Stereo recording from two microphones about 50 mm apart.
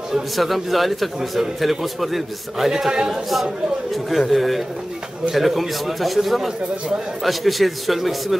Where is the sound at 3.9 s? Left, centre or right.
Centre.